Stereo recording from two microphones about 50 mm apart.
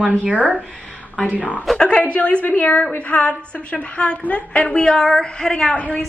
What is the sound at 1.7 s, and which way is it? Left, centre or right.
A woman's voice, left.